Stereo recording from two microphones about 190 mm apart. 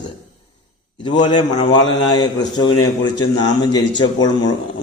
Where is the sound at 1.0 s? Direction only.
25° left (ahead or behind).